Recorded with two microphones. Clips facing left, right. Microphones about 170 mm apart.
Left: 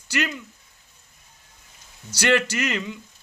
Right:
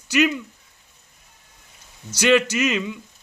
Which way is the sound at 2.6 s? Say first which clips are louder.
Right 4 dB; 10° right (ahead or behind).